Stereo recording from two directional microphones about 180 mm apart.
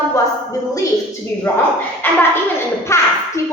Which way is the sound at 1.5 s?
10° left (ahead or behind).